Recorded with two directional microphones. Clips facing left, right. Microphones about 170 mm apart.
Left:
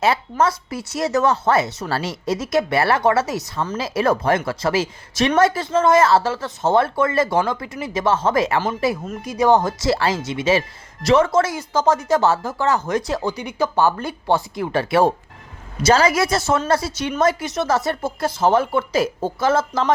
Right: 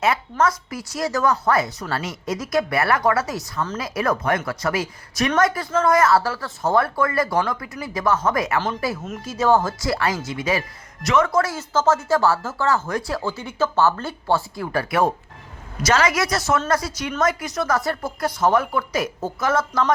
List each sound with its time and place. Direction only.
0.0 s speech: 30° left (ahead or behind)
11.5 s speech: 15° left (ahead or behind)